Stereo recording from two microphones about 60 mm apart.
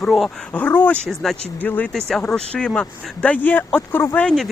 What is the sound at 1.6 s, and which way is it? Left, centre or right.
Speech, left.